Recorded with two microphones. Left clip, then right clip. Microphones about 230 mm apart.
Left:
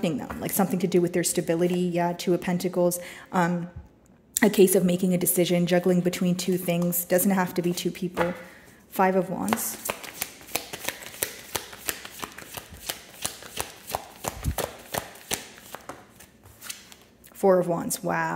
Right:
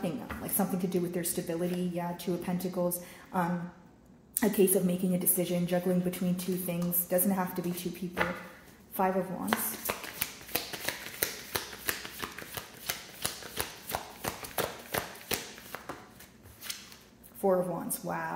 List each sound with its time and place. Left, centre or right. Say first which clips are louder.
0.0 s speech: left 7 dB; left
9.0 s speech: left 7 dB; left
9.8 s shuffling cards: left 3 dB; left
17.4 s speech: left 7 dB; left